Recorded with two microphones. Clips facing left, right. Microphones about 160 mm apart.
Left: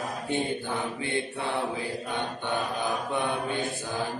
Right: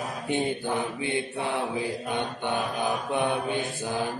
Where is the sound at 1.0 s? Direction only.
15° right (ahead or behind).